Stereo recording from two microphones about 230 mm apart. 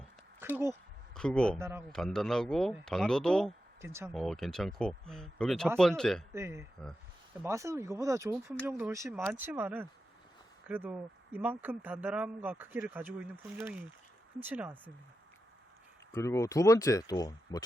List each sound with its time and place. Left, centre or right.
0.5 s speech: centre
1.1 s a man's voice: centre
1.5 s speech: centre
1.9 s speech: centre
3.8 s speech: centre
4.1 s speech: centre
6.3 s speech: centre
16.1 s speech: centre